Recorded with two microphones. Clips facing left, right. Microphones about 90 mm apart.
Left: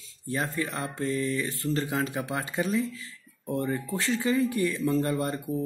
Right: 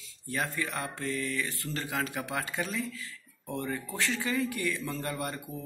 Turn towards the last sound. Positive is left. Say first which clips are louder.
# left 8 dB
turn(degrees=30)  # may be behind; listen again after turning